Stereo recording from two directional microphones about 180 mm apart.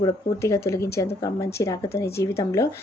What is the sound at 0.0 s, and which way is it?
Speech, 15° left (ahead or behind).